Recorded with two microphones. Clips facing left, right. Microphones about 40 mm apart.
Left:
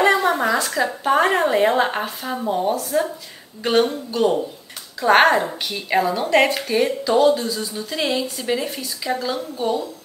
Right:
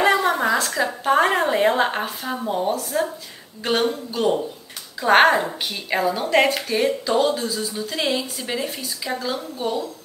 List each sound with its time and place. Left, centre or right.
0.0 s a woman's voice: centre